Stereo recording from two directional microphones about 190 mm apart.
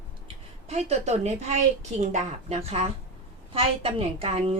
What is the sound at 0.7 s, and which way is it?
A woman's voice, 35° right (ahead or behind).